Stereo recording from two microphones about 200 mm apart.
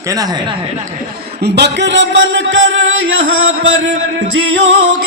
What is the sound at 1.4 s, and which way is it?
Music, 60° right (ahead or behind).